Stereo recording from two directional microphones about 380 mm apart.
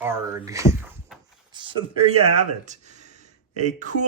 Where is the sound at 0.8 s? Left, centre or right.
Centre.